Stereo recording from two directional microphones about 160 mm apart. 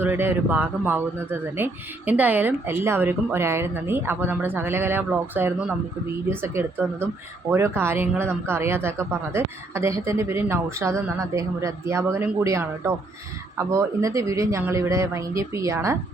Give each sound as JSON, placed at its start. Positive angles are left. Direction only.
{"t": 0.0, "sound": "speech", "side_deg": -15}